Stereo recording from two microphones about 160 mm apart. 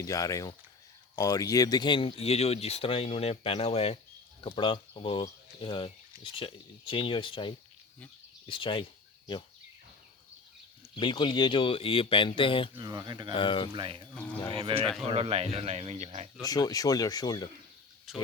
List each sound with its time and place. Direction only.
0.0 s speech: 20° left (ahead or behind)
11.0 s speech: 30° left (ahead or behind)
12.7 s speech: 25° right (ahead or behind)
13.3 s speech: 30° left (ahead or behind)
13.7 s speech: 30° right (ahead or behind)
16.4 s speech: 25° left (ahead or behind)
18.1 s speech: centre (ahead or behind)